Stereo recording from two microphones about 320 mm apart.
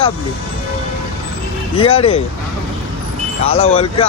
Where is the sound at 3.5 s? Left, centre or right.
Centre.